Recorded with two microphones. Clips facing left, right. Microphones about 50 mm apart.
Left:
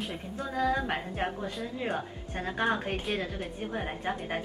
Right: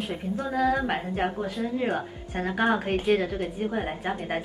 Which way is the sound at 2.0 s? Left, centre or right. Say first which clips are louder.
Right 5 dB; centre.